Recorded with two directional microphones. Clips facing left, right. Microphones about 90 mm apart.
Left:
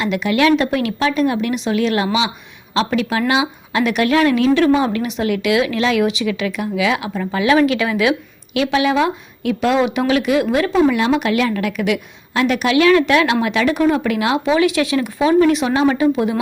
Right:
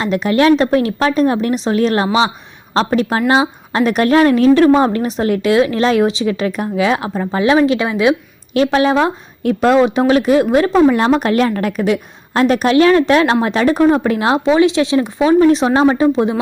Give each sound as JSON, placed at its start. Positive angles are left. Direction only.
{"t": 0.0, "sound": "a woman's voice", "side_deg": -35}
{"t": 8.5, "sound": "a woman's voice", "side_deg": -35}